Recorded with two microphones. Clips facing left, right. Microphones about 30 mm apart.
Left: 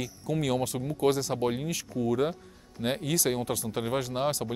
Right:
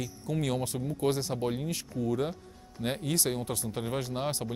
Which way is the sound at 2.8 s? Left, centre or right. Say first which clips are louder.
Left 2 dB; left.